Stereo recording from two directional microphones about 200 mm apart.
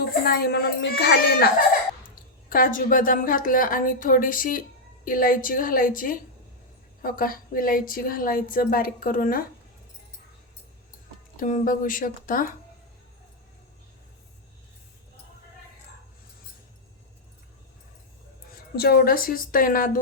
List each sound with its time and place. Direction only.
0.3 s speech: 50° left (ahead or behind)
2.5 s a woman's voice: 45° left (ahead or behind)
11.3 s a woman's voice: 40° left (ahead or behind)
18.8 s a woman's voice: 50° left (ahead or behind)